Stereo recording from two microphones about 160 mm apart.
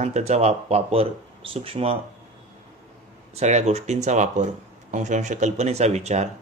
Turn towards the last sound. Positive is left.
turn(degrees=-45)  # may be behind; listen again after turning